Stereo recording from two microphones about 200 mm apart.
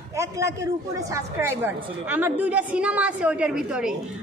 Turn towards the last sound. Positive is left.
turn(degrees=-5)  # may be behind; listen again after turning